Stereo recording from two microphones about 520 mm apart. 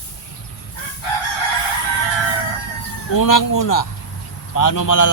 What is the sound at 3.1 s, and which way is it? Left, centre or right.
A man's voice, left.